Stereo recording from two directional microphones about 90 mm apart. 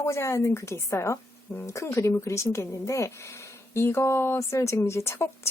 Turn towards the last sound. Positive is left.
turn(degrees=30)  # may be behind; listen again after turning